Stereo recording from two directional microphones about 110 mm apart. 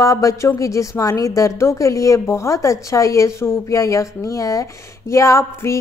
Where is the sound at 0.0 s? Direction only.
30° left (ahead or behind).